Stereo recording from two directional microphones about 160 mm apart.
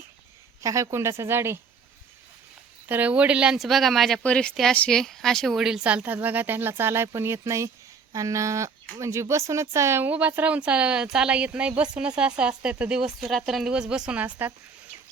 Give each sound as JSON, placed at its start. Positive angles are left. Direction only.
{"t": 0.6, "sound": "speech", "side_deg": -20}
{"t": 2.9, "sound": "speech", "side_deg": -10}